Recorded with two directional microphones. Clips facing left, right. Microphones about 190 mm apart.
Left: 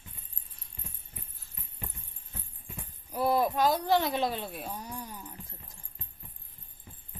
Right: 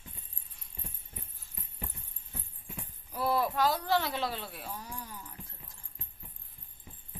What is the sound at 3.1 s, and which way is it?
Speech, 15° left (ahead or behind).